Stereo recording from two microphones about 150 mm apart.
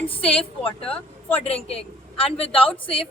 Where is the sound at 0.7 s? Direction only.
10° left (ahead or behind).